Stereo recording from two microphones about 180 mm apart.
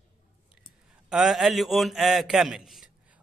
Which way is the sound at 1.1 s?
Centre (ahead or behind).